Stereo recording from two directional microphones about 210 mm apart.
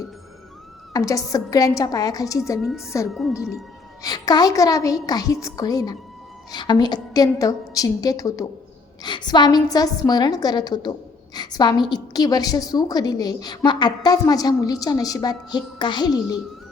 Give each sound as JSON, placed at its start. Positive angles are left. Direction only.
{"t": 0.9, "sound": "a woman's voice", "side_deg": 15}
{"t": 2.6, "sound": "a woman's voice", "side_deg": 0}
{"t": 3.3, "sound": "a woman's voice", "side_deg": 15}